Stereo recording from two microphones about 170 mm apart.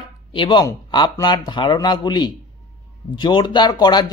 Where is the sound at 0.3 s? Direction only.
30° left (ahead or behind).